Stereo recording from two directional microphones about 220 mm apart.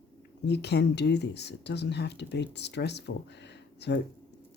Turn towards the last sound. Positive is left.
turn(degrees=50)  # may be behind; listen again after turning